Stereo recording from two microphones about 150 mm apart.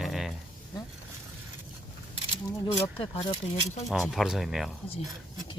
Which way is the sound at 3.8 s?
Centre (ahead or behind).